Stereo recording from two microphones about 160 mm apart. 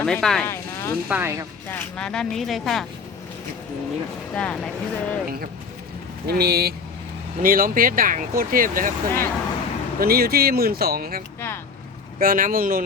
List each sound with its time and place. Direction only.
0.0 s speech: 5° left (ahead or behind)
0.4 s a sound: 15° left (ahead or behind)
1.0 s speech: 10° right (ahead or behind)
1.6 s speech: 15° left (ahead or behind)
4.4 s speech: 5° left (ahead or behind)
6.2 s speech: 80° right
7.4 s speech: 65° right (ahead or behind)
11.3 s speech: 15° left (ahead or behind)
12.2 s speech: 60° right (ahead or behind)